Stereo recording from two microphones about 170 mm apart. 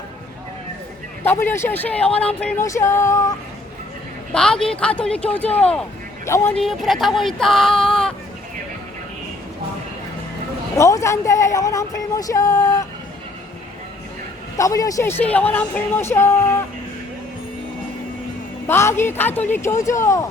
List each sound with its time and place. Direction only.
1.2 s speech: 10° left (ahead or behind)
4.3 s speech: 5° left (ahead or behind)
6.6 s speech: centre (ahead or behind)
10.8 s speech: 20° left (ahead or behind)
14.6 s speech: 20° left (ahead or behind)
15.2 s speech: 10° left (ahead or behind)
18.7 s speech: 15° left (ahead or behind)